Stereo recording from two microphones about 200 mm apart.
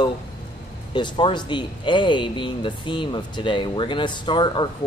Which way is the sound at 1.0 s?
25° left (ahead or behind).